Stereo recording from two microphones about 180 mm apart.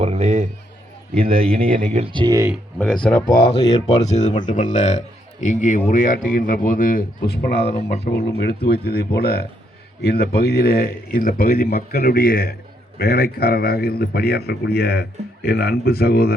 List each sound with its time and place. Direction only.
0.0 s a man's voice: 40° right (ahead or behind)
1.5 s speech: 50° right (ahead or behind)
2.1 s speech: 20° right (ahead or behind)
2.7 s speech: 5° left (ahead or behind)
3.2 s a man's voice: 60° left (ahead or behind)
3.8 s speech: 40° left (ahead or behind); by 7.9 s 65° left (ahead or behind)
7.9 s speech: 40° left (ahead or behind)
8.4 s a man's voice: 65° left (ahead or behind)